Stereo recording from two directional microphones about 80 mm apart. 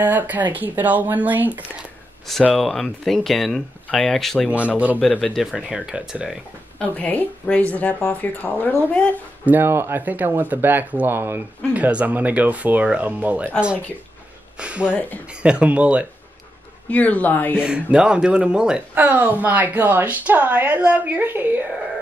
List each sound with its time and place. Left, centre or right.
0.0 s speech: right
2.5 s speech: centre
5.5 s speech: centre
6.8 s speech: centre
9.5 s speech: right
14.6 s speech: centre
14.9 s speech: left
15.2 s speech: centre
16.9 s speech: centre
17.6 s speech: centre
18.9 s speech: right